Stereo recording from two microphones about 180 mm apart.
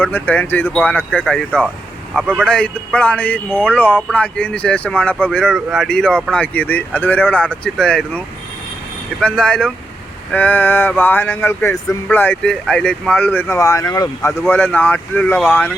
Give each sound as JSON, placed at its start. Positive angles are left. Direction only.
{"t": 0.0, "sound": "speech", "side_deg": 10}
{"t": 2.1, "sound": "speech", "side_deg": -10}
{"t": 2.4, "sound": "speech", "side_deg": 5}
{"t": 9.2, "sound": "speech", "side_deg": 5}